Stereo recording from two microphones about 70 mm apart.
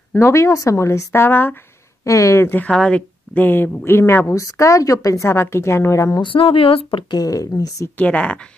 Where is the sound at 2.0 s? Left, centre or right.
Left.